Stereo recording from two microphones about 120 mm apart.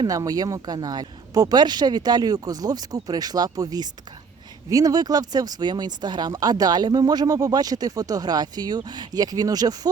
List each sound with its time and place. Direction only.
0.0 s speech: 30° right (ahead or behind)